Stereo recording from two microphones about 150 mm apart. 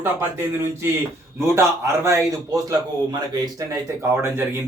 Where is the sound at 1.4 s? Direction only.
20° right (ahead or behind).